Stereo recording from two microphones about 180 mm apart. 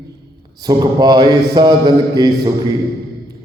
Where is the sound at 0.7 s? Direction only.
20° right (ahead or behind).